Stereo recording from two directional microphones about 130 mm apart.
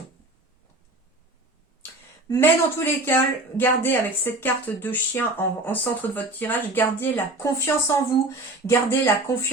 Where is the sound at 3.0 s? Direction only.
15° left (ahead or behind).